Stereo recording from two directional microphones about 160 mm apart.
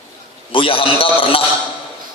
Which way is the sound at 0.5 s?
35° left (ahead or behind).